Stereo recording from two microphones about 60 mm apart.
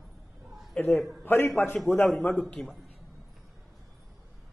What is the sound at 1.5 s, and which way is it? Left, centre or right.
Speech, left.